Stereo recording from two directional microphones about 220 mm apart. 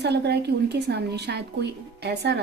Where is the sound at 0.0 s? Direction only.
50° right (ahead or behind).